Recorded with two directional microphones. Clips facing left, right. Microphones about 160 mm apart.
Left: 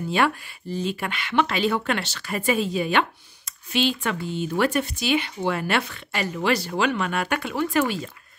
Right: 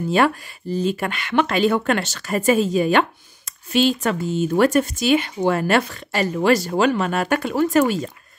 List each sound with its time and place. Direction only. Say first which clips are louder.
0.1 s speech: right 4 dB; 40° right (ahead or behind)